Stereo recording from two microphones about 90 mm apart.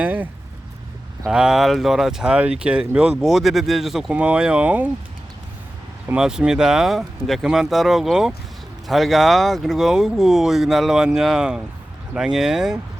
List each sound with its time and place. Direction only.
0.0 s speech: 20° right (ahead or behind)
1.3 s speech: 5° right (ahead or behind)
4.1 s speech: 15° right (ahead or behind)
6.1 s speech: 10° right (ahead or behind)